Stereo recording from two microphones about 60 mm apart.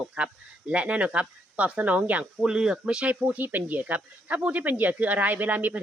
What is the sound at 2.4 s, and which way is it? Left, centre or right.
Speech, centre.